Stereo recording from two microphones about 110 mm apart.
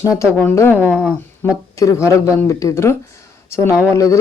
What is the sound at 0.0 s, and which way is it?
Speech, 30° left (ahead or behind).